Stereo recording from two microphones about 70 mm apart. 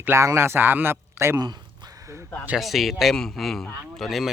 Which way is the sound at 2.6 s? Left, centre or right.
Centre.